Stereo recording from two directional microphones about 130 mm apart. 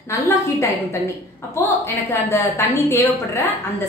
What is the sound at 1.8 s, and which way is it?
A woman's voice, 20° left (ahead or behind).